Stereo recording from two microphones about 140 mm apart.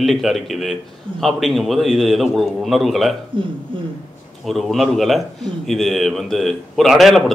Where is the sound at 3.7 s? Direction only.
40° right (ahead or behind).